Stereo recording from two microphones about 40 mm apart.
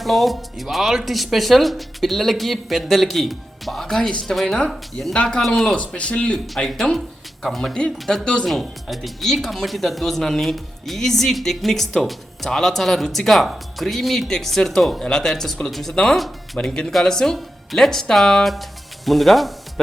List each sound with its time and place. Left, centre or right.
0.0 s speech: centre
5.1 s speech: left
7.4 s speech: centre
7.7 s speech: centre
7.9 s speech: centre
8.2 s speech: left
8.4 s speech: centre